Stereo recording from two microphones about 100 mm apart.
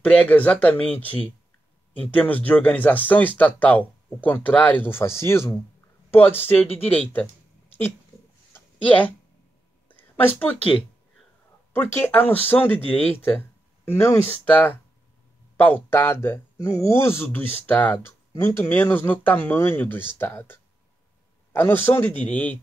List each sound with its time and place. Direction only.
0.0 s speech: 15° left (ahead or behind)
8.5 s a sound: 15° left (ahead or behind)
9.8 s speech: 15° left (ahead or behind)